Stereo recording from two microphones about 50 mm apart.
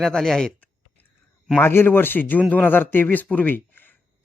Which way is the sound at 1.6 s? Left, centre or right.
Left.